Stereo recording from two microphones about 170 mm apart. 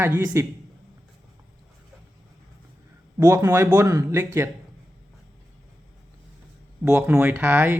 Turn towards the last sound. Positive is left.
turn(degrees=-10)  # may be behind; listen again after turning